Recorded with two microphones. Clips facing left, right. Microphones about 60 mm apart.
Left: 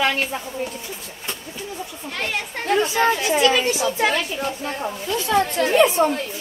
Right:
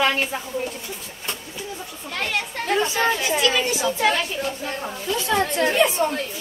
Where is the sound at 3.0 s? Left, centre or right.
Centre.